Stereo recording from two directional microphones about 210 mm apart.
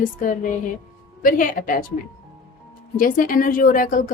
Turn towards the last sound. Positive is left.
turn(degrees=40)  # may be behind; listen again after turning